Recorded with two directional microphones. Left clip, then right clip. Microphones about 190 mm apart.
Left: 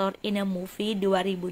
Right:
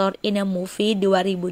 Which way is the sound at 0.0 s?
35° right (ahead or behind).